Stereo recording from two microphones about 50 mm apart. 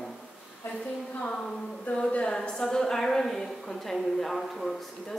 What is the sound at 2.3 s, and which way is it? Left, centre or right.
A woman's voice, centre.